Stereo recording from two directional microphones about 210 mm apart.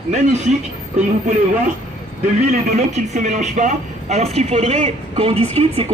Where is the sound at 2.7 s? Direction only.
35° right (ahead or behind).